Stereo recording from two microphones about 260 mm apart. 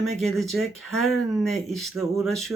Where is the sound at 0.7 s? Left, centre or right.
Left.